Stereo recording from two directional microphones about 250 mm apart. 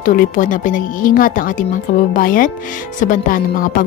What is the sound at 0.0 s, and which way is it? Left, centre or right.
A woman's voice, left.